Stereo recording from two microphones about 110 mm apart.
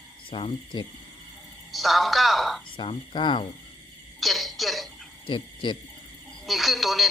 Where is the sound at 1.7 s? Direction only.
Centre (ahead or behind).